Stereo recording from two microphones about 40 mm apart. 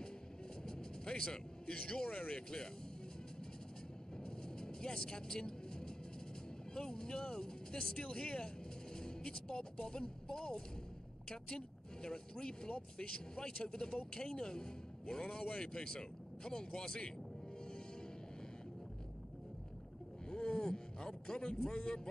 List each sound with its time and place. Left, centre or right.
0.7 s music: centre
2.1 s speech: left
4.2 s vehicle: centre
6.7 s speech: centre
8.9 s vehicle: centre
9.8 s speech: centre
20.2 s a sound: left
21.5 s speech: centre